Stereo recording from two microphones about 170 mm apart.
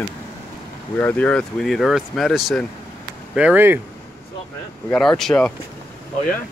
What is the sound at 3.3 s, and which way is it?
Speech, 10° right (ahead or behind).